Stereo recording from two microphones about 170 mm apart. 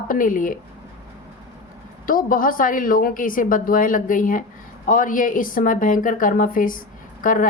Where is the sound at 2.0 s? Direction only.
55° left (ahead or behind).